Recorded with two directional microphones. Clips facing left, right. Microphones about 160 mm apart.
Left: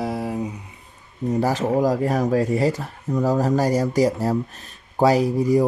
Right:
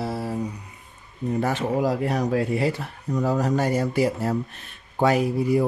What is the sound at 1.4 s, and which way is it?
Speech, 35° left (ahead or behind).